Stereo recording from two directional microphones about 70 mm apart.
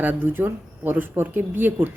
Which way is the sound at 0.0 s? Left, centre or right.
Right.